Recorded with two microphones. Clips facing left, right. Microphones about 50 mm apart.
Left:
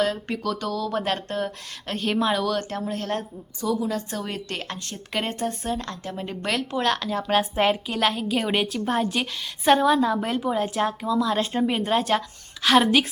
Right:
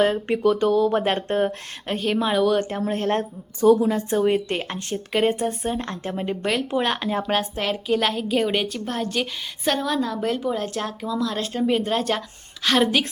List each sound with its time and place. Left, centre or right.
0.0 s speech: right
2.0 s speech: centre; by 2.8 s right
2.8 s a woman's voice: right
5.1 s speech: centre
5.7 s speech: right
6.2 s speech: centre
7.7 s a woman's voice: centre
11.3 s speech: centre
11.6 s a woman's voice: centre